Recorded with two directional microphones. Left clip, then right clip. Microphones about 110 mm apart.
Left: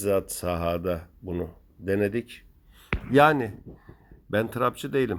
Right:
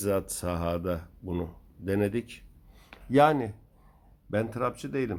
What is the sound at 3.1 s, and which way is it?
Speech, 25° left (ahead or behind).